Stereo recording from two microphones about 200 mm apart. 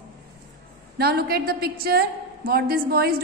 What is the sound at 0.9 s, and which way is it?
A woman's voice, 50° right (ahead or behind).